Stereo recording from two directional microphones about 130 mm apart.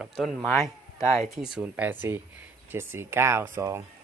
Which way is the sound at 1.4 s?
10° right (ahead or behind).